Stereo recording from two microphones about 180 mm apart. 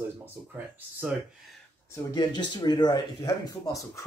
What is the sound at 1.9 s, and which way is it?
Speech, 20° left (ahead or behind).